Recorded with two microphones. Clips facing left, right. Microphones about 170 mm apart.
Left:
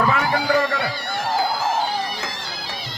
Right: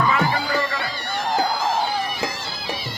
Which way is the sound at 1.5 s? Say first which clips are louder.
Even; 10° left (ahead or behind).